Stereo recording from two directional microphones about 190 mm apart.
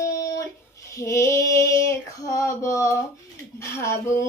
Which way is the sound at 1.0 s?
15° left (ahead or behind).